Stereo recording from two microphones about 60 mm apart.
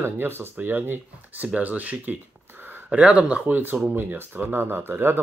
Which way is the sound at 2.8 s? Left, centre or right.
Right.